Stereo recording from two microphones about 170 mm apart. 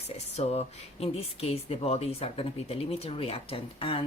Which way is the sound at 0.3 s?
35° left (ahead or behind).